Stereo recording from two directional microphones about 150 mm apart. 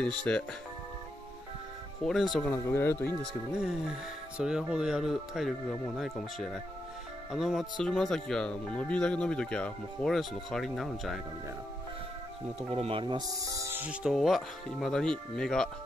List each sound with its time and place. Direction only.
0.0 s speech: 5° left (ahead or behind)
2.0 s speech: centre (ahead or behind)
2.5 s speech: 15° left (ahead or behind)
3.5 s speech: 5° right (ahead or behind)
12.7 s speech: 35° right (ahead or behind); by 13.8 s 20° right (ahead or behind)
13.8 s speech: 5° right (ahead or behind)